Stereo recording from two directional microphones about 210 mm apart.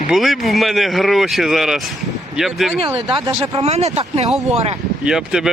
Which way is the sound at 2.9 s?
25° right (ahead or behind).